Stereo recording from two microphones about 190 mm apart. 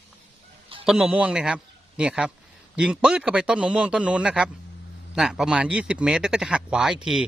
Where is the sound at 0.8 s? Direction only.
5° right (ahead or behind).